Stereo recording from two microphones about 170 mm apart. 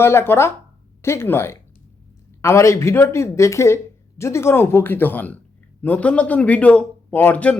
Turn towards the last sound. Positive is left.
turn(degrees=10)  # may be behind; listen again after turning